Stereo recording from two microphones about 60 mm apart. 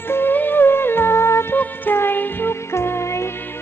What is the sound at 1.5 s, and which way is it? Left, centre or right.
Music, left.